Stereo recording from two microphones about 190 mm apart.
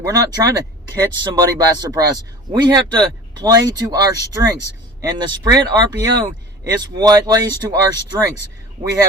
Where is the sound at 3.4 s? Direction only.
20° right (ahead or behind).